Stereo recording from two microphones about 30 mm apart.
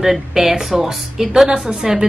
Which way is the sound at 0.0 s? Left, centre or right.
Centre.